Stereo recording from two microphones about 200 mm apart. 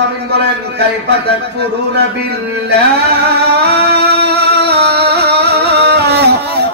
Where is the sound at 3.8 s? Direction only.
55° right (ahead or behind).